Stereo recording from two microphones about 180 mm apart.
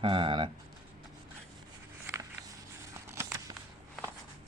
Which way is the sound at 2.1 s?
10° right (ahead or behind).